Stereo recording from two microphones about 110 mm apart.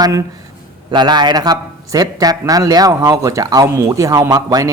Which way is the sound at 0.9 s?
40° right (ahead or behind).